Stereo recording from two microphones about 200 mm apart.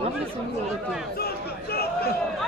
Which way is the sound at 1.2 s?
50° left (ahead or behind).